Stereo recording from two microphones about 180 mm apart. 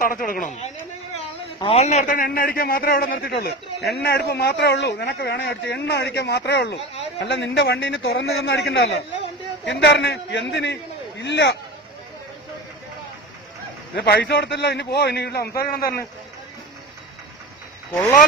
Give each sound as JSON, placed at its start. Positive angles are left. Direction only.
{"t": 0.0, "sound": "a woman's voice", "side_deg": 50}
{"t": 1.6, "sound": "a man's voice", "side_deg": 35}
{"t": 13.9, "sound": "a man's voice", "side_deg": 65}